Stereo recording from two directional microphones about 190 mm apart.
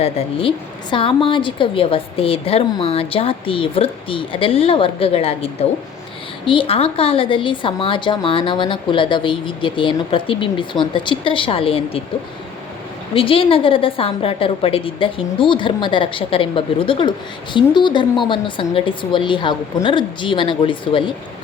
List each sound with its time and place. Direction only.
0.0 s a woman's voice: 30° left (ahead or behind)
13.1 s a woman's voice: 30° left (ahead or behind)